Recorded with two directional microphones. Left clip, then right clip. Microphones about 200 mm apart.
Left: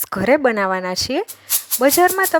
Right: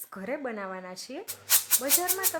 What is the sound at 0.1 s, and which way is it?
Speech, 45° left (ahead or behind).